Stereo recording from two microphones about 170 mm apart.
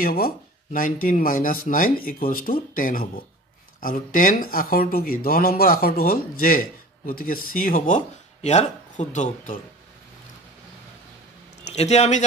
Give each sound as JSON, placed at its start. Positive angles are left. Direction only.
{"t": 0.0, "sound": "speech", "side_deg": 60}
{"t": 11.6, "sound": "speech", "side_deg": 40}